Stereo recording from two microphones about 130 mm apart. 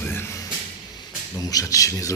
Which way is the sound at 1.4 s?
30° left (ahead or behind).